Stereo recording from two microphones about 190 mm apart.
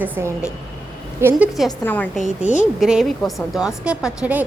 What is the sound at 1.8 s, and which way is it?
Speech, 10° left (ahead or behind).